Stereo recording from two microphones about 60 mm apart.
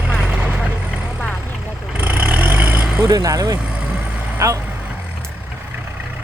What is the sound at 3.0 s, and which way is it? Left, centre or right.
Speech, right.